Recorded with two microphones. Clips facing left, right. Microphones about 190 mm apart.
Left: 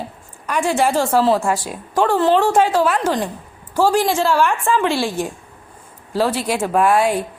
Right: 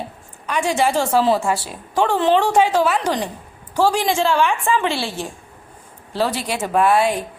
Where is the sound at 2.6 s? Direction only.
10° right (ahead or behind).